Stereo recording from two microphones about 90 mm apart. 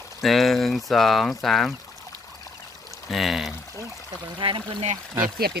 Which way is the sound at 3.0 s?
Centre (ahead or behind).